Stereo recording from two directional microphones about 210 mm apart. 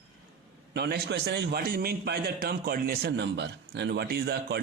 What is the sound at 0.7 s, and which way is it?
A man's voice, 50° right (ahead or behind).